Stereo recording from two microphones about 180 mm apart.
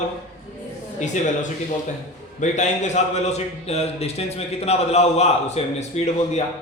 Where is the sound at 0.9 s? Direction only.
40° left (ahead or behind).